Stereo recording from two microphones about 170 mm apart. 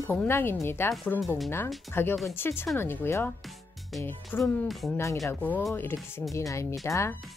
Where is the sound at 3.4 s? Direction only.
Centre (ahead or behind).